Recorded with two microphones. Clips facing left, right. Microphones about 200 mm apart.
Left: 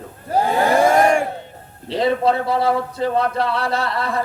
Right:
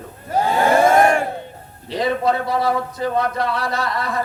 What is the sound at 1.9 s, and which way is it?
A man's voice, 30° left (ahead or behind).